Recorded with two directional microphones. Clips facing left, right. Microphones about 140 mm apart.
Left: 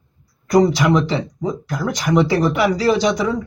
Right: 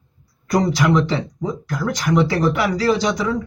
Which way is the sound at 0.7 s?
20° left (ahead or behind).